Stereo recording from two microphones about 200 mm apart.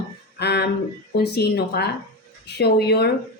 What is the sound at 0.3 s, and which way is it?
A woman's voice, 55° left (ahead or behind).